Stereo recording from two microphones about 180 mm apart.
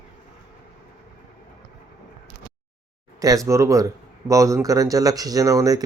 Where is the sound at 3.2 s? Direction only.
20° right (ahead or behind).